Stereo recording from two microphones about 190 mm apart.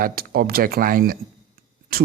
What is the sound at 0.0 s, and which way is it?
Speech, 50° right (ahead or behind).